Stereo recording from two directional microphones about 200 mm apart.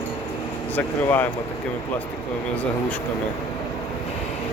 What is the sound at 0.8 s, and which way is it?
Speech, 10° left (ahead or behind).